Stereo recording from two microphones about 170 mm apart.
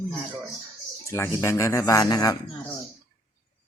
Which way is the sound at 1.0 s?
15° left (ahead or behind).